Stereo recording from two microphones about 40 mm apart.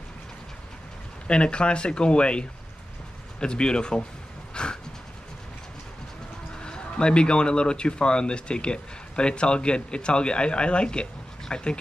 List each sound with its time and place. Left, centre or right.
1.2 s speech: left
4.6 s a sound: left
6.6 s speech: left